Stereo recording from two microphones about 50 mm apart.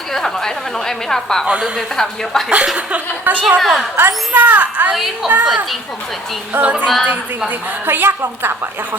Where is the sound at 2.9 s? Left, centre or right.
Right.